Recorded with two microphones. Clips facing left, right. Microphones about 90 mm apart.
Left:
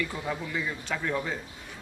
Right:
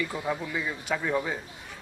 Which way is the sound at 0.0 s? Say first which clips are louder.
Right 2 dB; 10° right (ahead or behind).